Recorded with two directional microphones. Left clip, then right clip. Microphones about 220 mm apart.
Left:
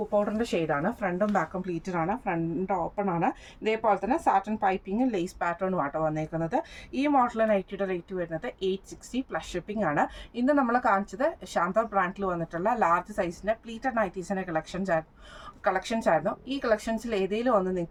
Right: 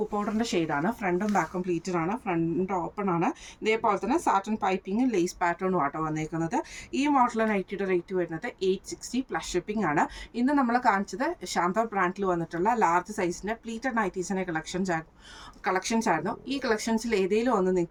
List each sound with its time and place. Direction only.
0.3 s speech: 20° left (ahead or behind)